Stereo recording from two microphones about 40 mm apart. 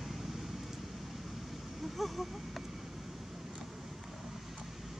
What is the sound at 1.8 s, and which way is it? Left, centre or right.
Vehicle, centre.